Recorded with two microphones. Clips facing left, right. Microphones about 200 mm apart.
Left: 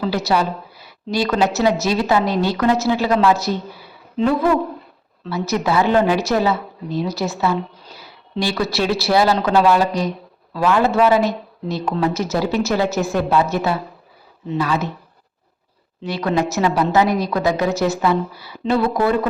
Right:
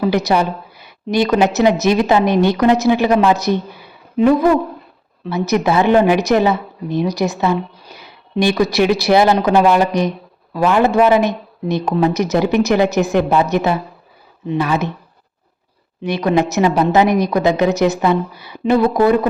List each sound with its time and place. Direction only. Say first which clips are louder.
0.0 s a woman's voice: right 4 dB; 15° right (ahead or behind)
16.0 s a woman's voice: right 4 dB; 20° right (ahead or behind)